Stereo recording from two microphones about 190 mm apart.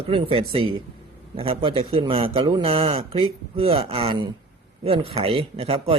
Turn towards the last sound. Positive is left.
turn(degrees=-30)  # may be behind; listen again after turning